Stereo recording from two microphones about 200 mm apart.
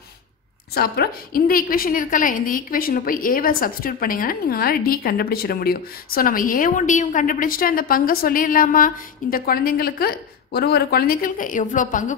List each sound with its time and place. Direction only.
0.7 s a woman's voice: 50° left (ahead or behind)